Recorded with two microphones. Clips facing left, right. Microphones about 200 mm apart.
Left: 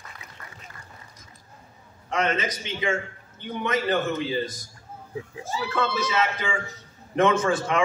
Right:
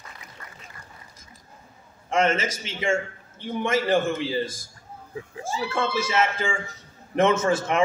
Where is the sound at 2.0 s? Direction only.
25° right (ahead or behind).